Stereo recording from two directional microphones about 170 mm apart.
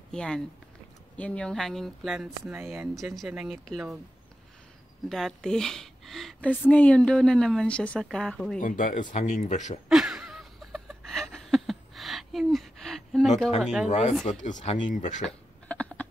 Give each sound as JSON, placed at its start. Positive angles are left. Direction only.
{"t": 0.1, "sound": "a woman's voice", "side_deg": 5}
{"t": 2.4, "sound": "speech", "side_deg": -15}
{"t": 2.7, "sound": "a woman's voice", "side_deg": 0}
{"t": 5.1, "sound": "a woman's voice", "side_deg": 0}
{"t": 8.5, "sound": "speech", "side_deg": 50}
{"t": 9.8, "sound": "a sound", "side_deg": -5}
{"t": 13.6, "sound": "a woman's voice", "side_deg": 0}
{"t": 13.8, "sound": "speech", "side_deg": 40}
{"t": 15.2, "sound": "a sound", "side_deg": 5}